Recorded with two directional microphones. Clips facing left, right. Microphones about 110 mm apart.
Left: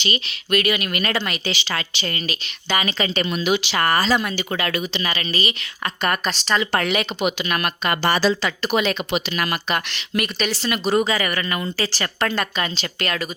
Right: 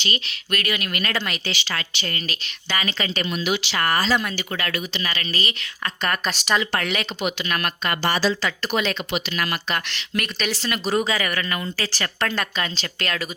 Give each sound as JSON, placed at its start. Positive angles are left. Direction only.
{"t": 0.0, "sound": "speech", "side_deg": 20}
{"t": 3.8, "sound": "speech", "side_deg": 35}
{"t": 4.4, "sound": "speech", "side_deg": 20}
{"t": 6.3, "sound": "speech", "side_deg": -10}
{"t": 6.7, "sound": "speech", "side_deg": 30}
{"t": 6.9, "sound": "speech", "side_deg": 15}